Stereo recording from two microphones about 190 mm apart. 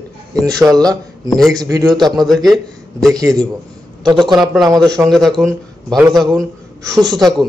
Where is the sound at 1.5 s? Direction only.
20° right (ahead or behind).